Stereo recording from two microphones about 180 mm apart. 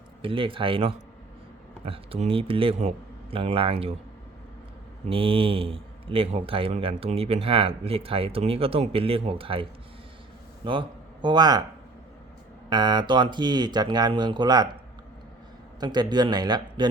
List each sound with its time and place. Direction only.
0.2 s speech: 30° right (ahead or behind)
5.0 s speech: 30° right (ahead or behind)
12.7 s speech: 25° right (ahead or behind)
15.8 s speech: 25° right (ahead or behind)